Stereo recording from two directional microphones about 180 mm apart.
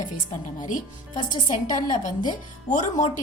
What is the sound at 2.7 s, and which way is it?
Speech, 40° left (ahead or behind).